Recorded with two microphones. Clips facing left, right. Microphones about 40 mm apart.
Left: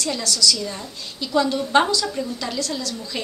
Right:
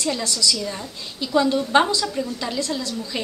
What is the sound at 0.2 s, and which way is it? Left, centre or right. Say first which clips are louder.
Speech: left 2 dB; centre.